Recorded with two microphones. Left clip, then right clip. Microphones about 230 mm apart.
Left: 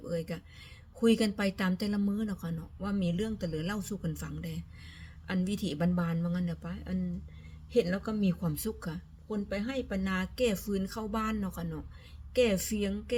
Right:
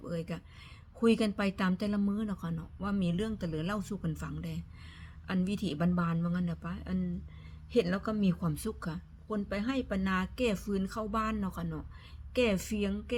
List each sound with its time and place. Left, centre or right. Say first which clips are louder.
0.1 s a woman's voice: left 4 dB; centre